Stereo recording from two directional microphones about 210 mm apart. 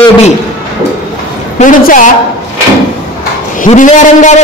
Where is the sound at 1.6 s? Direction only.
40° left (ahead or behind).